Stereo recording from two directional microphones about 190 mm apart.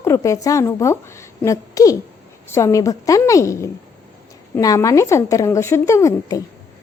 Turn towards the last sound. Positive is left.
turn(degrees=15)  # may be behind; listen again after turning